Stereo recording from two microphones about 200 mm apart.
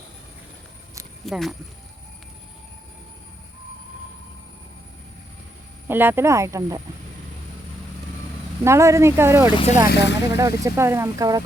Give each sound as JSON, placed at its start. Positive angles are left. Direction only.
{"t": 1.2, "sound": "speech", "side_deg": 0}
{"t": 5.9, "sound": "speech", "side_deg": -10}
{"t": 8.6, "sound": "speech", "side_deg": -15}
{"t": 9.5, "sound": "speech", "side_deg": 25}
{"t": 9.8, "sound": "speech", "side_deg": 55}
{"t": 10.2, "sound": "speech", "side_deg": -15}